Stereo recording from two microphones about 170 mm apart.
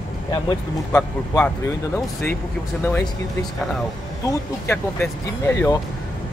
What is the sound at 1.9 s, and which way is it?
Speech, 15° left (ahead or behind).